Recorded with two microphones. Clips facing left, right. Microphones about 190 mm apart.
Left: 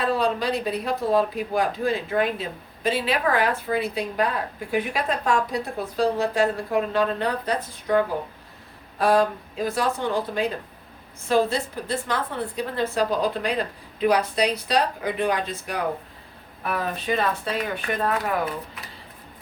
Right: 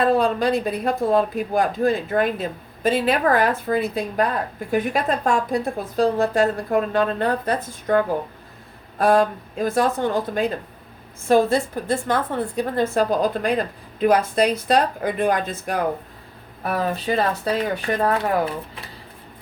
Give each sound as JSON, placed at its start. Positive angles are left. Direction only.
{"t": 0.0, "sound": "speech", "side_deg": -50}
{"t": 16.6, "sound": "speech", "side_deg": -35}